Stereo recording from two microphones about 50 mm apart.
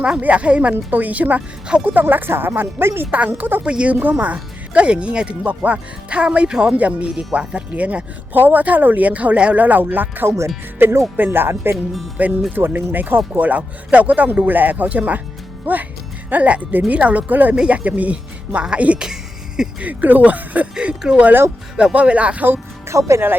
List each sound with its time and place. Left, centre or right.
0.2 s speech: right
3.1 s speech: right
3.6 s speech: right
10.2 s speech: right
10.8 s speech: right
12.2 s speech: right
12.5 s speech: right
17.5 s speech: right
18.9 s music: centre
19.8 s speech: right
20.7 s speech: centre
21.9 s speech: right
22.9 s speech: right